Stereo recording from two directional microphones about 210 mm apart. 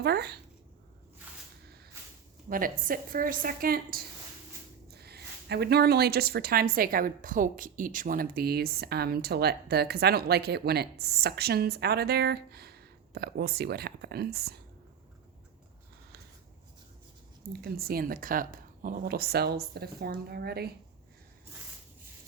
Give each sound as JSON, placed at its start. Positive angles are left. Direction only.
{"t": 0.0, "sound": "a woman's voice", "side_deg": -50}
{"t": 1.6, "sound": "a sound", "side_deg": -50}
{"t": 2.5, "sound": "a woman's voice", "side_deg": -40}
{"t": 17.5, "sound": "a woman's voice", "side_deg": -45}